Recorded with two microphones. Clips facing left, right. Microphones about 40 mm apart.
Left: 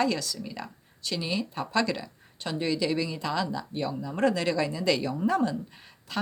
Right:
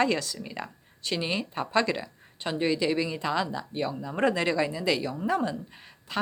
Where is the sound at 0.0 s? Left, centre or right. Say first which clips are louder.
Right 1 dB; right.